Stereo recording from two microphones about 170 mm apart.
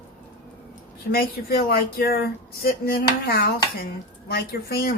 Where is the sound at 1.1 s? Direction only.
65° left (ahead or behind).